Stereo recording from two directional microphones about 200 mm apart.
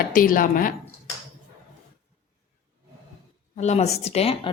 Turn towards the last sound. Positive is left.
turn(degrees=30)  # may be behind; listen again after turning